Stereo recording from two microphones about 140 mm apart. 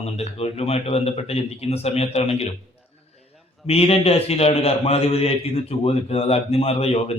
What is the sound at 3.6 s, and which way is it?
A man's voice, 45° left (ahead or behind).